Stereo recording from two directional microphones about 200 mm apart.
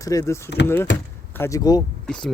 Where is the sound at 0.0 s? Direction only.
15° left (ahead or behind).